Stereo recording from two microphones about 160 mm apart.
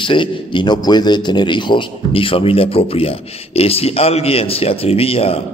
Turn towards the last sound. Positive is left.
turn(degrees=35)  # may be behind; listen again after turning